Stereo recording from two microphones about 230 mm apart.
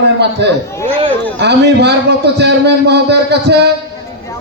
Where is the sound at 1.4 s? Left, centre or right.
Right.